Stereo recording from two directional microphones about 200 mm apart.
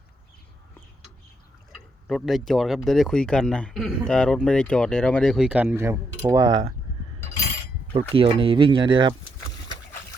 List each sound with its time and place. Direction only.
2.0 s speech: centre (ahead or behind); by 6.7 s 20° right (ahead or behind)
8.1 s speech: 25° right (ahead or behind)